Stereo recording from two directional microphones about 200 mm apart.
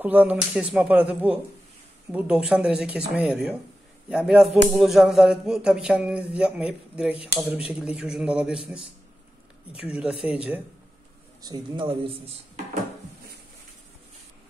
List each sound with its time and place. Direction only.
0.0 s speech: 10° right (ahead or behind)
11.4 s speech: 20° right (ahead or behind)